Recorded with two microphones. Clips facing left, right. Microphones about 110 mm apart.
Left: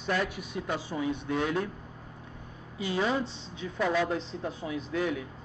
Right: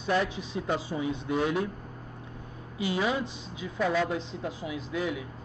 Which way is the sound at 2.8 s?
10° right (ahead or behind).